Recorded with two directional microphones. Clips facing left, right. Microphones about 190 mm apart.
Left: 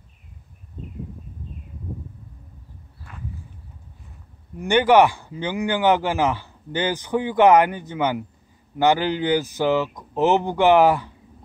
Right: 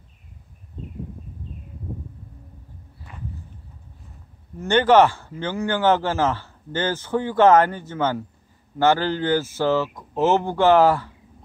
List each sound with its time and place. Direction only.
4.6 s a man's voice: 15° left (ahead or behind)